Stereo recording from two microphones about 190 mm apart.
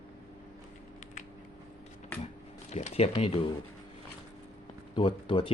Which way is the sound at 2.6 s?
35° left (ahead or behind).